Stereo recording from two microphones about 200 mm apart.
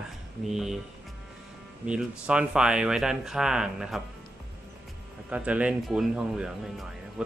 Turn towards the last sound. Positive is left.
turn(degrees=-5)  # may be behind; listen again after turning